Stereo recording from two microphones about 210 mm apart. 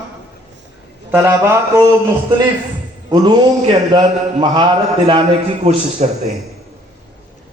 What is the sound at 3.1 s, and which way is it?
A man's voice, 20° right (ahead or behind).